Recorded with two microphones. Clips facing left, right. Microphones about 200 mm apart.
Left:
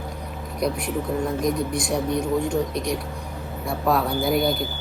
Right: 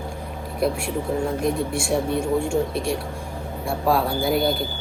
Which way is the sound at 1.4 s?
20° left (ahead or behind).